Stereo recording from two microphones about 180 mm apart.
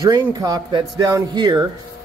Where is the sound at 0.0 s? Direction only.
20° right (ahead or behind).